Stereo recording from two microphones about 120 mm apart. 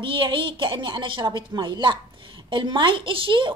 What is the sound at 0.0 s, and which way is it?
A woman's voice, 45° right (ahead or behind).